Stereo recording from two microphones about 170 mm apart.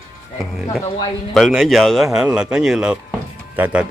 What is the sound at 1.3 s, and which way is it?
Speech, centre (ahead or behind).